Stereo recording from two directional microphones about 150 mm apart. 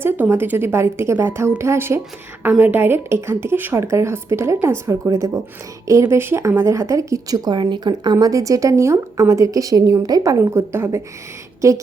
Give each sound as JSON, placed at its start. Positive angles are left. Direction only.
{"t": 0.0, "sound": "a woman's voice", "side_deg": -15}